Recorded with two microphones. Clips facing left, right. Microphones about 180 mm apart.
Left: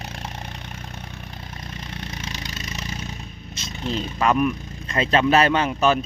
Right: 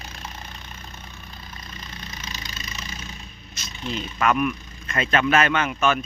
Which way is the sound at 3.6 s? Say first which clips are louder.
Left 4 dB; 30° left (ahead or behind).